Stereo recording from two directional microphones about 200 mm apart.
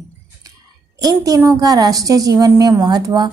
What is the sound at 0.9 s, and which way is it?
A woman's voice, 15° right (ahead or behind).